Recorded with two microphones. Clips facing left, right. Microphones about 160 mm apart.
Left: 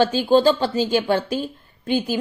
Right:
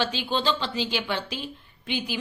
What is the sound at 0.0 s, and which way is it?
A woman's voice, 45° left (ahead or behind).